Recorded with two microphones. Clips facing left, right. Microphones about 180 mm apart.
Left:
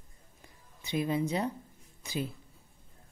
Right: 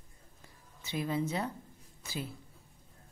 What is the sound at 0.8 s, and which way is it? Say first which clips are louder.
A woman's voice: left 3 dB; 20° left (ahead or behind).